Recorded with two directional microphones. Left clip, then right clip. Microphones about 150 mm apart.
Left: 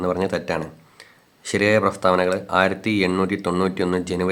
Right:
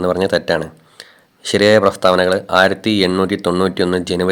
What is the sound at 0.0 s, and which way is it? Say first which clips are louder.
Speech: right 7 dB; 35° right (ahead or behind).